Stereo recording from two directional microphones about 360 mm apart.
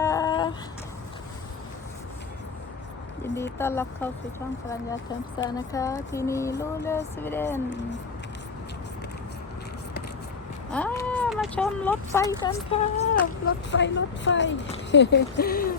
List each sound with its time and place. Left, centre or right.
0.0 s a sound: centre
3.3 s speech: centre
5.4 s speech: centre
10.7 s a sound: centre
12.4 s speech: centre
13.4 s speech: left